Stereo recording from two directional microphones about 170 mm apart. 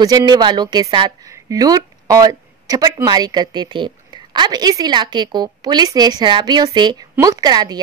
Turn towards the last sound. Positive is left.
turn(degrees=-25)  # may be behind; listen again after turning